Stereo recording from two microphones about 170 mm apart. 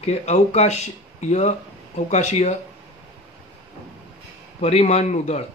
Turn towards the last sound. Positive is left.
turn(degrees=40)  # may be behind; listen again after turning